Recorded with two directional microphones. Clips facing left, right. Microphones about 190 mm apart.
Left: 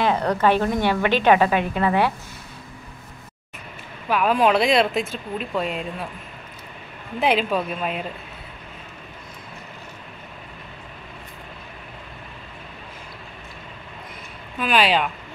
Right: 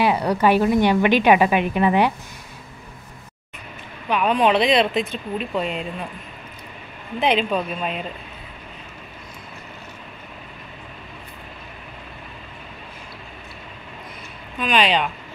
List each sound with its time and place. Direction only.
0.0 s a woman's voice: 10° right (ahead or behind)
4.1 s speech: centre (ahead or behind)
7.2 s speech: 5° left (ahead or behind)
14.6 s speech: 5° left (ahead or behind)